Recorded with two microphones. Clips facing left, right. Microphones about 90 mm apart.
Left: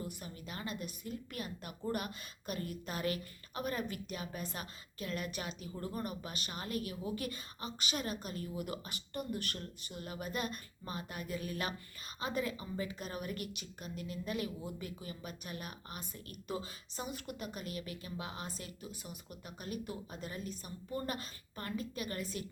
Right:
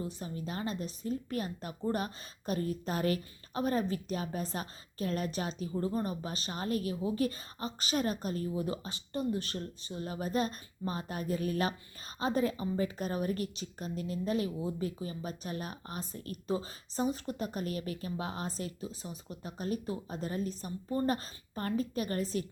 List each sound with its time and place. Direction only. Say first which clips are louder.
0.0 s speech: right 6 dB; 30° right (ahead or behind)